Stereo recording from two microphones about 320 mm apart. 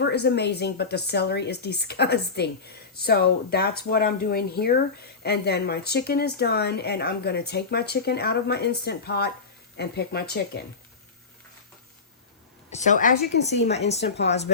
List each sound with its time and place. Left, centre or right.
0.0 s a woman's voice: left
12.7 s a woman's voice: left
13.7 s a woman's voice: centre